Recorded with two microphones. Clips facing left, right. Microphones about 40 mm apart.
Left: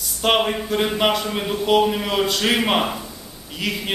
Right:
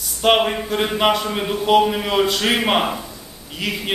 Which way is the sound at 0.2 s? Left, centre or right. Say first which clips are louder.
Right 3 dB; centre.